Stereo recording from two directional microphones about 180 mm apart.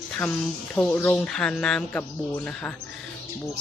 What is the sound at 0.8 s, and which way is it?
Speech, 10° left (ahead or behind).